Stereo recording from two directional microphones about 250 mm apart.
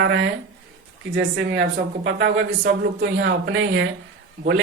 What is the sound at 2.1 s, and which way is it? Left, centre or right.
Speech, right.